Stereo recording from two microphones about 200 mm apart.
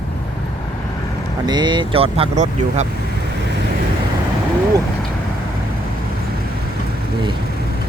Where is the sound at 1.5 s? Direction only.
20° right (ahead or behind).